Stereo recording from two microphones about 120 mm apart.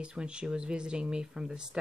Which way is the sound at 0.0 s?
10° right (ahead or behind).